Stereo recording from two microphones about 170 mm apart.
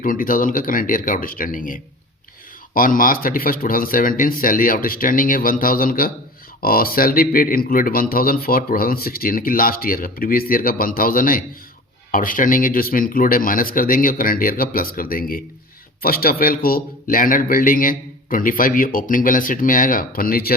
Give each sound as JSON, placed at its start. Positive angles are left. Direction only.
{"t": 0.0, "sound": "speech", "side_deg": 55}